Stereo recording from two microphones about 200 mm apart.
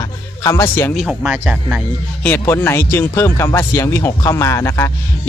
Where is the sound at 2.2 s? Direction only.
10° left (ahead or behind).